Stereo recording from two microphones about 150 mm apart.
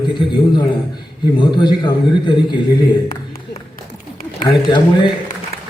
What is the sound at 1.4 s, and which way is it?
A man's voice, 30° left (ahead or behind).